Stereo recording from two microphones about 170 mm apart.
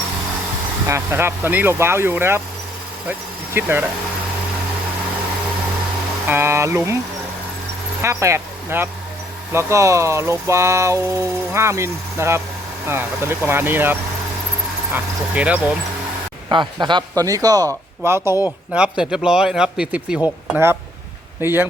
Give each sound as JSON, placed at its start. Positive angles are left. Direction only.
{"t": 0.9, "sound": "speech", "side_deg": -15}
{"t": 6.2, "sound": "speech", "side_deg": -15}
{"t": 8.0, "sound": "speech", "side_deg": -15}
{"t": 14.9, "sound": "speech", "side_deg": -10}
{"t": 16.5, "sound": "speech", "side_deg": -30}
{"t": 21.4, "sound": "speech", "side_deg": -10}